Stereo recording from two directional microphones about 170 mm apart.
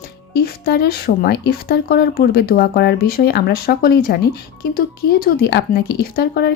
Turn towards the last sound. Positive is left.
turn(degrees=70)  # may be behind; listen again after turning